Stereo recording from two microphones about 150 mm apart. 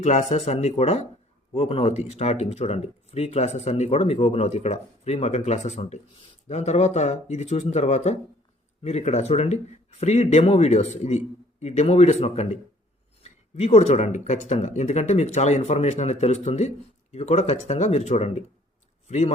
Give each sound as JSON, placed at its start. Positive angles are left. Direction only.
{"t": 0.0, "sound": "speech", "side_deg": 50}